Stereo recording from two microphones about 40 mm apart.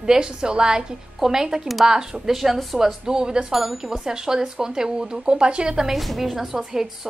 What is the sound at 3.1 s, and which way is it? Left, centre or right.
Speech, centre.